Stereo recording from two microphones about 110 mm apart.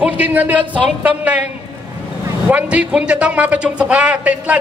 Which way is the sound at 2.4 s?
10° right (ahead or behind).